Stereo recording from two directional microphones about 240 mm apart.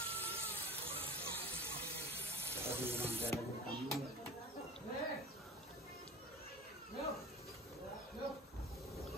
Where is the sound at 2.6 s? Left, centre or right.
Centre.